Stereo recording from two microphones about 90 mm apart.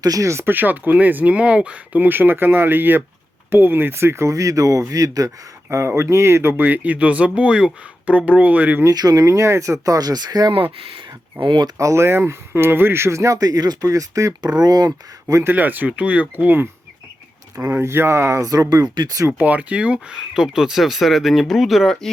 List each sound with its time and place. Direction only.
0.0 s speech: 40° right (ahead or behind); by 8.8 s 15° right (ahead or behind)
8.8 s speech: 45° right (ahead or behind)
10.5 s speech: 85° right; by 11.7 s 60° right (ahead or behind)
11.8 s speech: 30° right (ahead or behind)
15.4 s speech: 20° right (ahead or behind)
17.6 s speech: 30° right (ahead or behind)
19.4 s speech: 15° right (ahead or behind); by 22.1 s centre (ahead or behind)